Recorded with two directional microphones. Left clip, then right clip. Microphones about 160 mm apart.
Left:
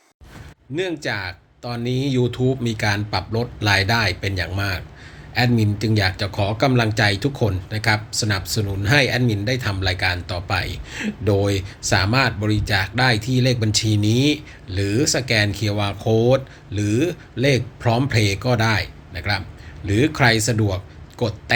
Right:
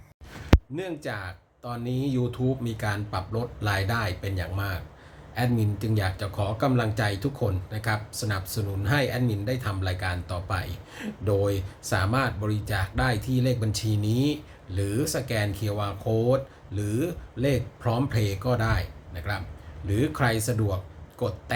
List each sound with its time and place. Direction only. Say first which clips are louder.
0.8 s speech: left 9 dB; centre (ahead or behind)